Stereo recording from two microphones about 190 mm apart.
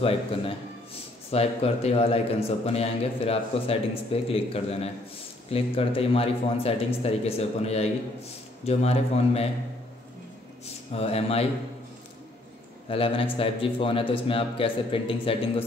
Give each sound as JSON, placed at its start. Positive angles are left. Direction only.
{"t": 0.0, "sound": "a man's voice", "side_deg": 30}
{"t": 10.9, "sound": "a man's voice", "side_deg": 35}
{"t": 12.8, "sound": "a man's voice", "side_deg": 30}